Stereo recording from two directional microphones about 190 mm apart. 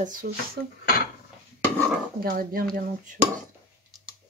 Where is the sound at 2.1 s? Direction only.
50° right (ahead or behind).